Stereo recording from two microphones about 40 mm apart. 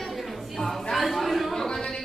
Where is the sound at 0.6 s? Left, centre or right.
Centre.